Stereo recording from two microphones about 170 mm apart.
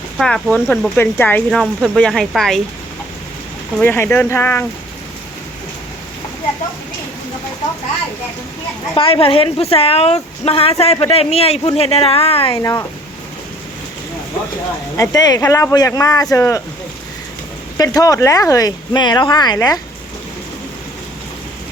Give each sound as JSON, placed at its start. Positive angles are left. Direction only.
{"t": 0.2, "sound": "speech", "side_deg": 0}
{"t": 3.8, "sound": "speech", "side_deg": 10}
{"t": 9.2, "sound": "speech", "side_deg": 35}
{"t": 12.5, "sound": "speech", "side_deg": 20}
{"t": 14.9, "sound": "speech", "side_deg": 20}
{"t": 17.7, "sound": "speech", "side_deg": 20}